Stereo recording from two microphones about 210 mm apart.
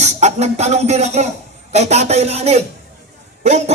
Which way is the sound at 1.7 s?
30° right (ahead or behind).